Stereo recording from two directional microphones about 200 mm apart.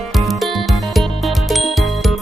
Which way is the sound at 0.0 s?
Centre (ahead or behind).